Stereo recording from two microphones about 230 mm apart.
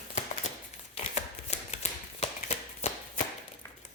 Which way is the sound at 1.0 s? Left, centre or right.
Left.